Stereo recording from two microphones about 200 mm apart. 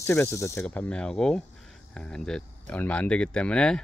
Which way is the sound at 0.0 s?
15° left (ahead or behind).